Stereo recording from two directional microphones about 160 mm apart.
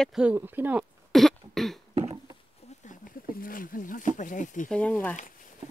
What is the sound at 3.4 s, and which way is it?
Speech, 60° left (ahead or behind).